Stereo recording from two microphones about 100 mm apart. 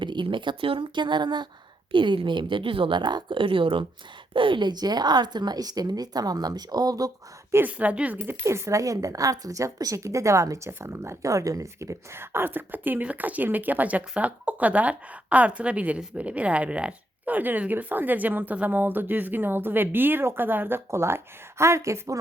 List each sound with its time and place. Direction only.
0.0 s a woman's voice: 50° right (ahead or behind)
7.5 s a woman's voice: 15° right (ahead or behind)
8.4 s a woman's voice: 30° right (ahead or behind)